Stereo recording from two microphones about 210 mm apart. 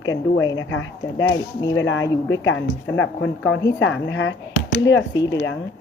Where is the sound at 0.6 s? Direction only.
75° left (ahead or behind).